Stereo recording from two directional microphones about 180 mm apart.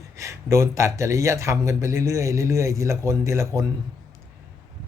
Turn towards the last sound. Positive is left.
turn(degrees=-15)  # may be behind; listen again after turning